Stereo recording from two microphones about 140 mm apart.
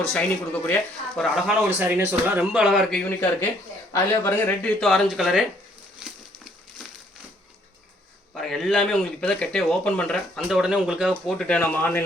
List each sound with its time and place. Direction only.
0.0 s speech: 5° left (ahead or behind)
1.8 s speech: 15° right (ahead or behind)
3.9 s speech: 20° left (ahead or behind)
4.8 s speech: centre (ahead or behind)
6.1 s crumpling: centre (ahead or behind)
8.4 s speech: centre (ahead or behind)